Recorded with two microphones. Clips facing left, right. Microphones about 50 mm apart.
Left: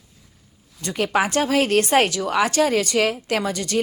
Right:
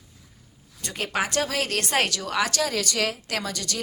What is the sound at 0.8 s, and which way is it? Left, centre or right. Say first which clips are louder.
A woman's voice: left 6 dB; left.